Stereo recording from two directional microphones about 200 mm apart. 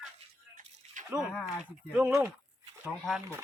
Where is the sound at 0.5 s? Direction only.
40° right (ahead or behind).